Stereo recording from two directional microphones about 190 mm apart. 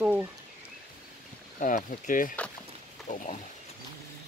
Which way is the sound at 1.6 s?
45° left (ahead or behind).